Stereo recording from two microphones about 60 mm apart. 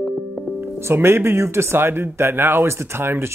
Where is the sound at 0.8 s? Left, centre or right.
Right.